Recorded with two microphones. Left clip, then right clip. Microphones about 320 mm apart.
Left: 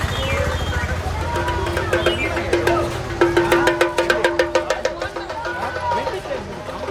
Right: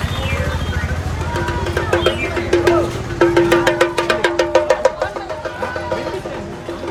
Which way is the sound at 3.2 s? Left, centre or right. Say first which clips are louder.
Right 3 dB; centre.